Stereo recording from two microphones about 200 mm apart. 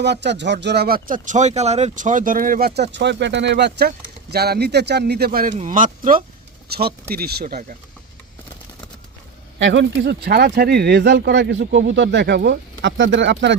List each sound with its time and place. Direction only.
0.0 s speech: 60° right (ahead or behind)
9.6 s speech: 65° right (ahead or behind)